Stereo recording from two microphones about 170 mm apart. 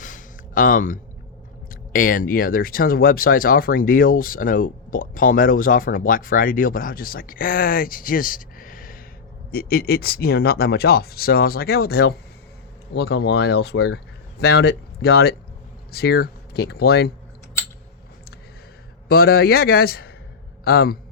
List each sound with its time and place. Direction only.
0.0 s a sound: 50° left (ahead or behind)
1.7 s speech: 55° left (ahead or behind)
12.9 s speech: 85° left; by 17.1 s 70° left (ahead or behind)
19.0 s speech: 65° left (ahead or behind)